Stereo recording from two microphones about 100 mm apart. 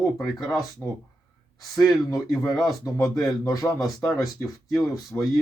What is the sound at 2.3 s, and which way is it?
Speech, centre (ahead or behind).